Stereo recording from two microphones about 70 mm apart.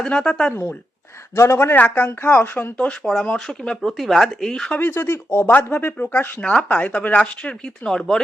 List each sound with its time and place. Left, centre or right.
0.0 s speech: centre
0.5 s speech: left
2.3 s speech: left
3.0 s speech: centre
4.8 s speech: left; by 8.2 s centre